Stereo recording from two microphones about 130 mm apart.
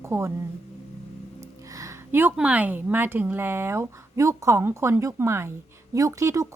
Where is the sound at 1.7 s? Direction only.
20° right (ahead or behind).